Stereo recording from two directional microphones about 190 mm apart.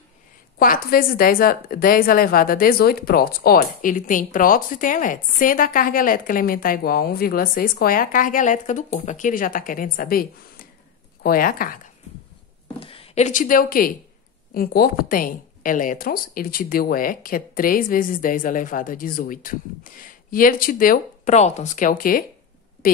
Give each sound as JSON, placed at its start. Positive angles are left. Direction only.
{"t": 0.6, "sound": "a woman's voice", "side_deg": 50}
{"t": 12.8, "sound": "a woman's voice", "side_deg": 30}